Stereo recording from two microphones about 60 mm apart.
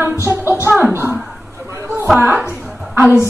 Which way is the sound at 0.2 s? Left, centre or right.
Right.